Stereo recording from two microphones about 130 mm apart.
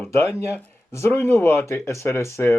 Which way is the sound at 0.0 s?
20° left (ahead or behind).